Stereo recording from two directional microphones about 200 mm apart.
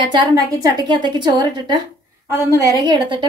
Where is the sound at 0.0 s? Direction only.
20° right (ahead or behind).